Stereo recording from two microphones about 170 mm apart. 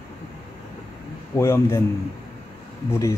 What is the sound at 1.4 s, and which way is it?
Speech, 15° left (ahead or behind).